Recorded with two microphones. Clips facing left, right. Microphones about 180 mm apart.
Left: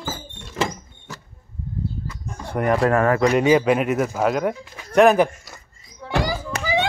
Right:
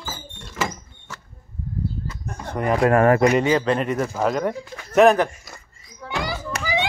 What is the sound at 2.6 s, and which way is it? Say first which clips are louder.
A man's voice: right 1 dB; 5° left (ahead or behind).